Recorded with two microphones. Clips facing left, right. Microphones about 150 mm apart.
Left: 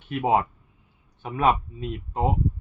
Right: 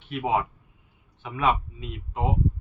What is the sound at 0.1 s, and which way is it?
Speech, 40° left (ahead or behind).